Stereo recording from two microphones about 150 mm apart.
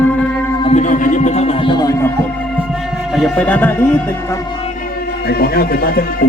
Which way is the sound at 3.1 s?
5° left (ahead or behind).